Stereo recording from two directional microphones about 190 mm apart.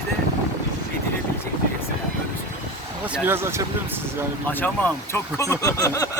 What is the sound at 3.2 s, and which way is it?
Speech, 15° right (ahead or behind).